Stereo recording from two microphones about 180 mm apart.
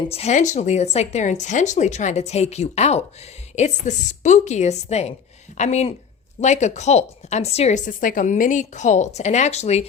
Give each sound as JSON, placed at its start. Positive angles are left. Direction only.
{"t": 0.1, "sound": "a woman's voice", "side_deg": 35}